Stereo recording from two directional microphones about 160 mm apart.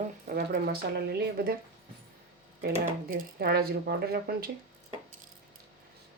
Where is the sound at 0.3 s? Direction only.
75° right (ahead or behind).